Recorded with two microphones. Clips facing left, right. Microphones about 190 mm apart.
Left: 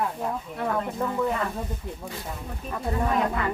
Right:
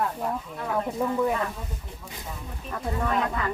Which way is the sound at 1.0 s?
10° right (ahead or behind).